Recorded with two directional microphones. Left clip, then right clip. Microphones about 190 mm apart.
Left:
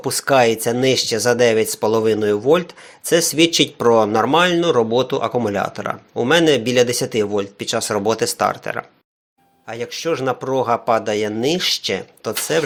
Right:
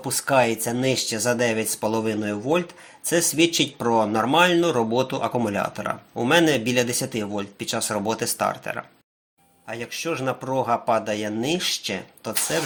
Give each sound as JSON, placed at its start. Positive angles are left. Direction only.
{"t": 0.0, "sound": "speech", "side_deg": 35}